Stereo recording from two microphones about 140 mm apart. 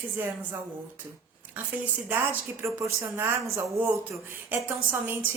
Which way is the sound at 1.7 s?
10° right (ahead or behind).